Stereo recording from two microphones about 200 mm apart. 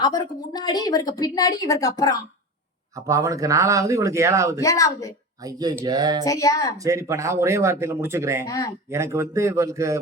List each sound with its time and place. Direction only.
0.0 s a woman's voice: 20° left (ahead or behind)
2.9 s speech: 15° right (ahead or behind)
4.6 s a woman's voice: 15° left (ahead or behind)
5.4 s a sound: 20° right (ahead or behind)
6.2 s a woman's voice: 15° left (ahead or behind)
6.8 s speech: 15° right (ahead or behind)
8.4 s a woman's voice: 15° left (ahead or behind)
8.9 s speech: 15° right (ahead or behind)